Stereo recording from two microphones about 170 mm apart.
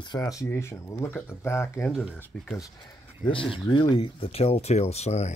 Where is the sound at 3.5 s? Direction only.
25° left (ahead or behind).